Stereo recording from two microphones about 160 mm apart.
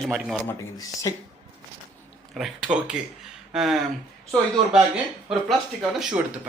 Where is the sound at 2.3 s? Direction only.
5° right (ahead or behind).